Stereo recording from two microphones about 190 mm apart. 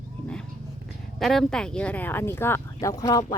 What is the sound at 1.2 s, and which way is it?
A woman's voice, centre (ahead or behind).